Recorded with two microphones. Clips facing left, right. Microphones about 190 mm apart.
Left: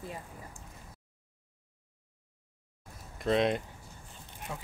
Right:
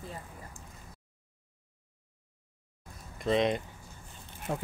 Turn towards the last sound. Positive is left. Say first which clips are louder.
# right 7 dB
turn(degrees=-55)  # may be behind; listen again after turning